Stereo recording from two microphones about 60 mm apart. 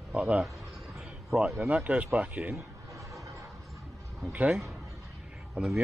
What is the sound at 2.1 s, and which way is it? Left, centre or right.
Speech, right.